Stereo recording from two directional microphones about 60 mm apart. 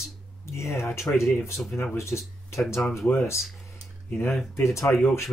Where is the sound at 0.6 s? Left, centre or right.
Left.